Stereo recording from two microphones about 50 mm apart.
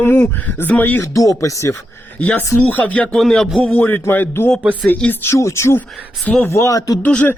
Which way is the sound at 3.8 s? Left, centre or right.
Left.